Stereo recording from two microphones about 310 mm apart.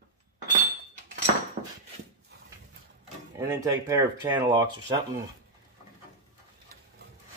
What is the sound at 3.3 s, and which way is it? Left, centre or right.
Speech, centre.